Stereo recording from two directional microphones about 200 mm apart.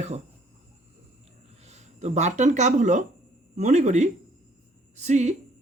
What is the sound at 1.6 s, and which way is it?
Speech, 35° right (ahead or behind).